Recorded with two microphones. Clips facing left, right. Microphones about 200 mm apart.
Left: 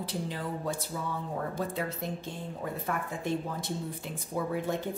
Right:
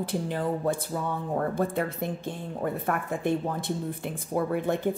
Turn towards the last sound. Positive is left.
turn(degrees=-60)  # may be behind; listen again after turning